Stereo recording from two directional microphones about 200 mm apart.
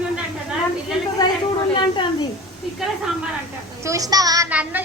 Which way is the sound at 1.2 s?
20° left (ahead or behind).